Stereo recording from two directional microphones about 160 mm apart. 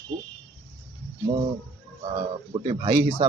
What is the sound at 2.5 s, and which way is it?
Speech, 30° right (ahead or behind).